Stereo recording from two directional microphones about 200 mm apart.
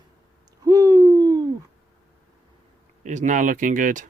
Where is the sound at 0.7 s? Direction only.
20° right (ahead or behind).